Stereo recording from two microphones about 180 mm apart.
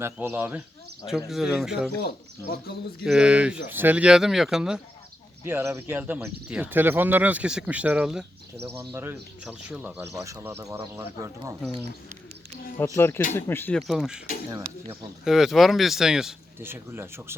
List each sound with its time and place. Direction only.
0.0 s speech: 10° right (ahead or behind)
2.0 s speech: 60° left (ahead or behind)
3.0 s speech: 5° right (ahead or behind)
5.4 s speech: 15° right (ahead or behind)
13.0 s speech: 15° left (ahead or behind)
15.2 s speech: centre (ahead or behind)